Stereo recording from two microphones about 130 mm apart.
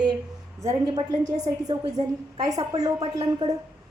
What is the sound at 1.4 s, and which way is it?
A woman's voice, 35° right (ahead or behind).